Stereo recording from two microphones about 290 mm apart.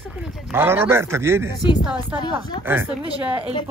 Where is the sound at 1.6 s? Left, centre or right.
Centre.